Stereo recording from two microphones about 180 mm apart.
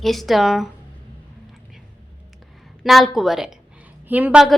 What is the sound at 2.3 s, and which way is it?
A woman's voice, centre (ahead or behind).